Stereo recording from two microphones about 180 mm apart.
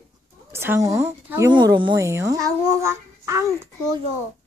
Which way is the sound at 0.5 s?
15° right (ahead or behind).